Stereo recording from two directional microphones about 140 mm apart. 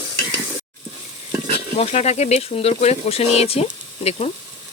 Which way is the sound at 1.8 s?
50° left (ahead or behind).